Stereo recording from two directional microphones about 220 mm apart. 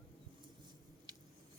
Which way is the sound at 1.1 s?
20° right (ahead or behind).